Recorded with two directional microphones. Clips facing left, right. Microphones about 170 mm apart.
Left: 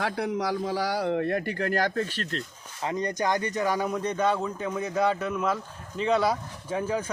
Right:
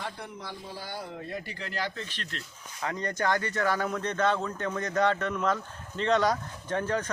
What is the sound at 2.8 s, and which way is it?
Speech, 20° left (ahead or behind).